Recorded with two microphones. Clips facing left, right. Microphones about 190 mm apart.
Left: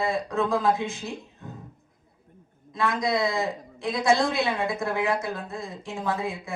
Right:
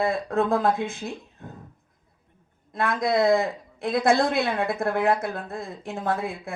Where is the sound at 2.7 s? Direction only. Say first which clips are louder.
Right 2 dB; 55° right (ahead or behind).